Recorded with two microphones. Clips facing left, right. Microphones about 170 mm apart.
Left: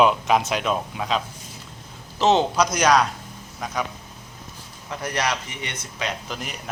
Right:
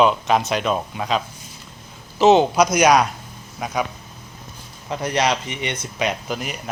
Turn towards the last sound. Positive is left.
turn(degrees=-10)  # may be behind; listen again after turning